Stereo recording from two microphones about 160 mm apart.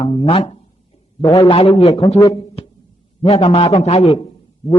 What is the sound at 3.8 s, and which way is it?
Speech, 40° left (ahead or behind).